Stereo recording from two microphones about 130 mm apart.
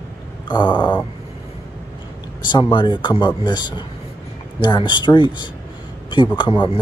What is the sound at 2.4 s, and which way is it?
Speech, 35° left (ahead or behind).